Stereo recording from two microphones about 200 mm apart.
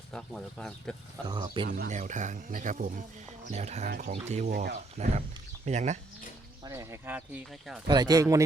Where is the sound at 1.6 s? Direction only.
45° right (ahead or behind).